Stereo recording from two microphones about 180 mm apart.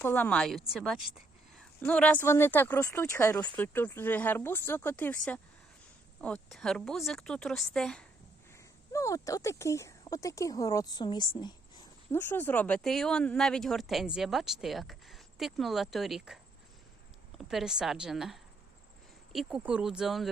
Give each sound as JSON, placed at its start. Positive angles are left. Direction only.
{"t": 0.0, "sound": "speech", "side_deg": 10}
{"t": 8.5, "sound": "speech", "side_deg": 15}
{"t": 12.1, "sound": "speech", "side_deg": 10}